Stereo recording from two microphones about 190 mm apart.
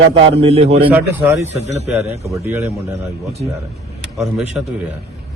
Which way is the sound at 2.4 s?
10° right (ahead or behind).